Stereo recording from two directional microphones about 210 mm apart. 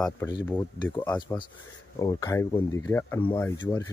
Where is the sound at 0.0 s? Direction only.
20° left (ahead or behind).